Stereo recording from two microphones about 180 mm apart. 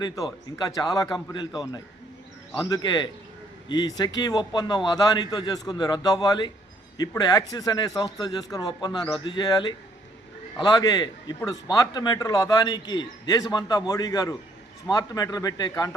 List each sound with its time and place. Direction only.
0.7 s speech: 20° left (ahead or behind)